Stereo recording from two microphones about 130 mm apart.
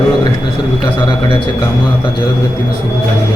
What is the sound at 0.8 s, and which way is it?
Speech, 35° left (ahead or behind).